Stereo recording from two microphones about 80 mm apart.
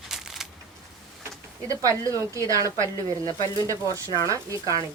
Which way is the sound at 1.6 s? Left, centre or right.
Right.